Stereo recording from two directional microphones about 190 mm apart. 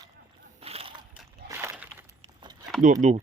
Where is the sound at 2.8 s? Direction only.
40° right (ahead or behind).